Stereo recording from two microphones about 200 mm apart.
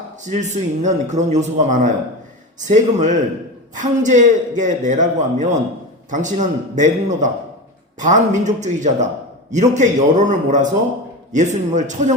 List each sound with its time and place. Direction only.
0.3 s a man's voice: 35° right (ahead or behind)